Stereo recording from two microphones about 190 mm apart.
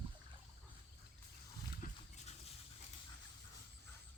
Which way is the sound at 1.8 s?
35° left (ahead or behind).